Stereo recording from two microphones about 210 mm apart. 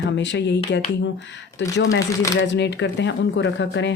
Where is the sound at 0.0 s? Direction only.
55° left (ahead or behind).